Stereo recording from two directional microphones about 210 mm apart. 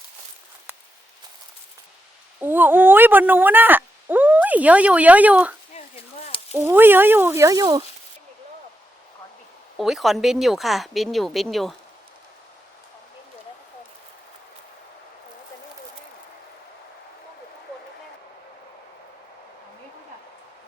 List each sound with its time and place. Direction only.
2.4 s speech: 10° right (ahead or behind)
5.7 s a sound: 30° left (ahead or behind)
6.5 s speech: 10° right (ahead or behind)
9.7 s speech: centre (ahead or behind)